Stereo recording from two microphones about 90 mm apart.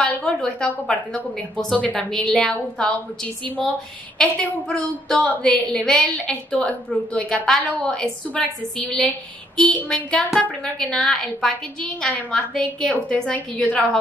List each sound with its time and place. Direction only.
0.0 s a woman's voice: 10° left (ahead or behind)